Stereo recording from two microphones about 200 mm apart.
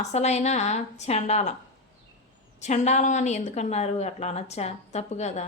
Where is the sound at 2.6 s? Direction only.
35° left (ahead or behind).